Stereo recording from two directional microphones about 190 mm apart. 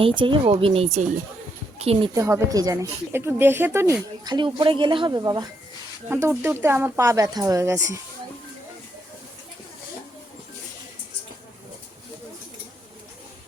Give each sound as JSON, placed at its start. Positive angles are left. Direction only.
{"t": 0.0, "sound": "a woman's voice", "side_deg": -25}
{"t": 2.1, "sound": "speech", "side_deg": -15}
{"t": 4.2, "sound": "speech", "side_deg": -25}